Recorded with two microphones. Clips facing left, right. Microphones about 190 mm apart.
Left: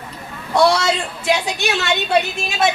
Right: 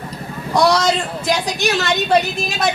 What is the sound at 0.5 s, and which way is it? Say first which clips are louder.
A woman's voice: even; 40° right (ahead or behind).